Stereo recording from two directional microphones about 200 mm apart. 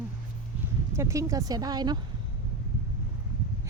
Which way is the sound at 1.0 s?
15° right (ahead or behind).